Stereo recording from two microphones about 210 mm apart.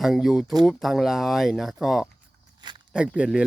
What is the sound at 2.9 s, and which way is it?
Speech, 5° right (ahead or behind).